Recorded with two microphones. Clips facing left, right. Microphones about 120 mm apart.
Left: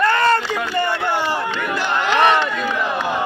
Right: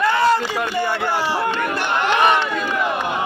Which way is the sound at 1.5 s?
50° right (ahead or behind).